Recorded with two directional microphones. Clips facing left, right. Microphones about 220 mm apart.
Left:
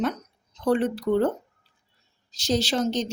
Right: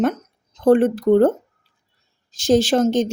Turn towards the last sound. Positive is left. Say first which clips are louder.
# right 8 dB
turn(degrees=-50)  # may be behind; listen again after turning